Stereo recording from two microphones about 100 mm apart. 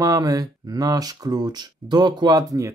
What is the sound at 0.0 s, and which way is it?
Speech, 35° right (ahead or behind).